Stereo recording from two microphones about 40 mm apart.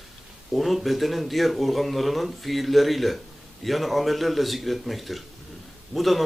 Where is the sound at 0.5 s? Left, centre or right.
Centre.